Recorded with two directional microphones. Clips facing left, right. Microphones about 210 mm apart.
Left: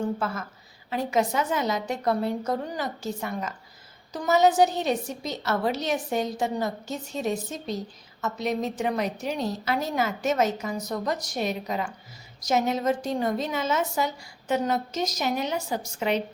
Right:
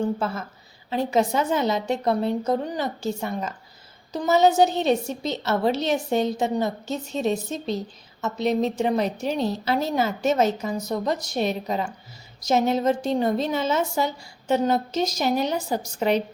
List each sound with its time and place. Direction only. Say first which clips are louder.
0.0 s a woman's voice: right 3 dB; 25° right (ahead or behind)